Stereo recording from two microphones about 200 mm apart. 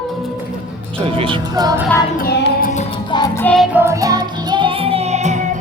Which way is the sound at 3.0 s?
20° left (ahead or behind).